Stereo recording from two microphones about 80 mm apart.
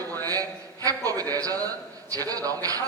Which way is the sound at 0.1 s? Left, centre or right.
Right.